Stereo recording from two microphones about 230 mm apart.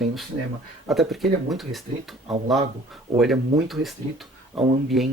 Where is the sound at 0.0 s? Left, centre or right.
Centre.